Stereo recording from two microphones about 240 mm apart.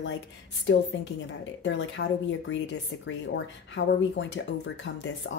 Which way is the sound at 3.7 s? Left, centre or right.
Left.